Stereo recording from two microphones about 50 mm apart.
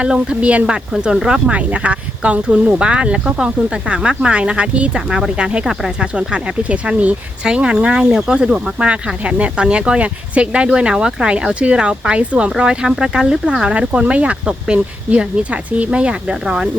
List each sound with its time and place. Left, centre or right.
0.0 s speech: right
0.9 s speech: centre
1.5 s speech: right
4.9 s speech: centre